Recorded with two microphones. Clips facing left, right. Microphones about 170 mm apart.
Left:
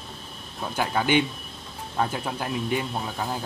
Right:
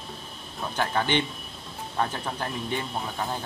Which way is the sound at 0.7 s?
10° left (ahead or behind).